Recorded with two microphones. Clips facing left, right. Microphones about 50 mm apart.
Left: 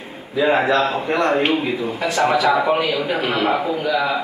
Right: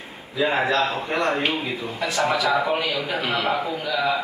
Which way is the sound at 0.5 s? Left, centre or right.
Centre.